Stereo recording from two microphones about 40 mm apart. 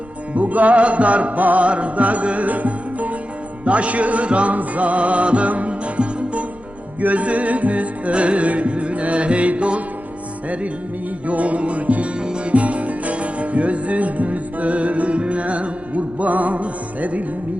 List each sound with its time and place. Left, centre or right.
0.3 s music: right
11.3 s music: right
12.2 s music: right
12.5 s music: right